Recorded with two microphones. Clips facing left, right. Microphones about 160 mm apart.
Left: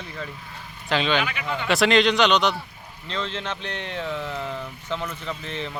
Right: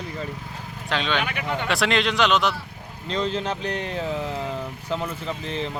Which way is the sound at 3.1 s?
40° right (ahead or behind).